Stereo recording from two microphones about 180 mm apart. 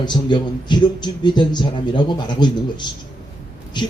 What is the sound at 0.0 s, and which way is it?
Speech, 25° left (ahead or behind).